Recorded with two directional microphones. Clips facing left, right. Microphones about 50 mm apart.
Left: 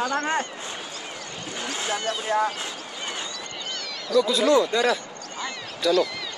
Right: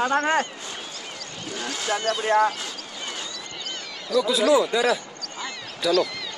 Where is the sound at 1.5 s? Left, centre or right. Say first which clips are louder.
Right 2 dB; left.